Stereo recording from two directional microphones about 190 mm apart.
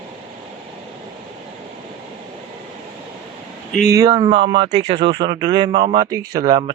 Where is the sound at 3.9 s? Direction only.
20° right (ahead or behind).